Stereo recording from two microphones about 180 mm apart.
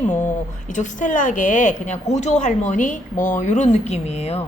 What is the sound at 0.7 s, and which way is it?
A woman's voice, 45° left (ahead or behind).